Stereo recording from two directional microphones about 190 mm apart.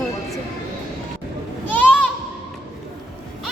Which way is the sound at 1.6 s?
10° left (ahead or behind).